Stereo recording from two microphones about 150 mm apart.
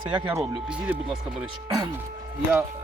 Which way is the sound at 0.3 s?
10° right (ahead or behind).